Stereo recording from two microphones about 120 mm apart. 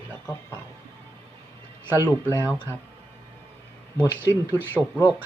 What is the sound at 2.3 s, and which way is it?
Speech, 20° right (ahead or behind).